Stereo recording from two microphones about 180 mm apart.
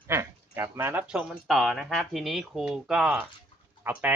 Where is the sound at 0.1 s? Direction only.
15° right (ahead or behind).